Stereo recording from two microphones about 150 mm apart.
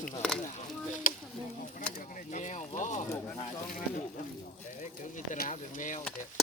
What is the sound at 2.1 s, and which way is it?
Speech, 55° left (ahead or behind).